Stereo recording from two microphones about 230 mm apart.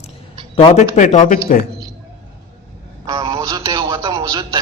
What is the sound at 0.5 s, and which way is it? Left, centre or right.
A man's voice, left.